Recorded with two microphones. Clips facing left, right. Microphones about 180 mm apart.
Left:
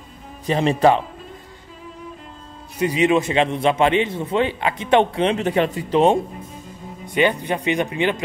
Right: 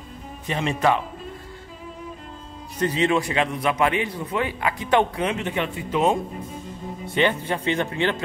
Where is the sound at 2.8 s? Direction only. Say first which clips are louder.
Left 4 dB; 15° left (ahead or behind); by 6.1 s 30° left (ahead or behind).